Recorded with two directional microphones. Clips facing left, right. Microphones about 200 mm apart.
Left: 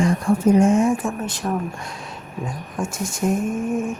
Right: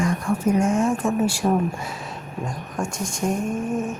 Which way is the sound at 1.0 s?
5° right (ahead or behind).